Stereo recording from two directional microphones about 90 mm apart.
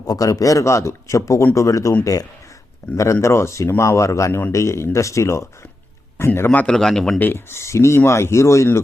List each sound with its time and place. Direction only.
0.0 s speech: 45° left (ahead or behind); by 6.7 s 20° left (ahead or behind)
6.7 s a man's voice: 5° left (ahead or behind)
7.2 s speech: 25° left (ahead or behind)